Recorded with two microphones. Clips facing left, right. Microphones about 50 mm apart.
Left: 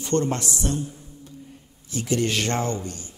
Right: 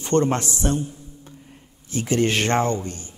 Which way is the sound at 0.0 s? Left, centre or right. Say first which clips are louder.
Right 4 dB; right.